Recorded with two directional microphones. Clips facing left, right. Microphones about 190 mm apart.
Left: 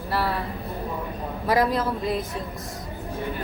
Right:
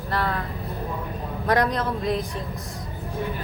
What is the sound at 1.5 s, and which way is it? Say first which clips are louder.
Speech: even; 5° left (ahead or behind).